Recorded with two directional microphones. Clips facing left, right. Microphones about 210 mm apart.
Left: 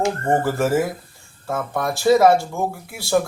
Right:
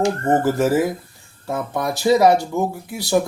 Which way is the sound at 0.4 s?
20° right (ahead or behind).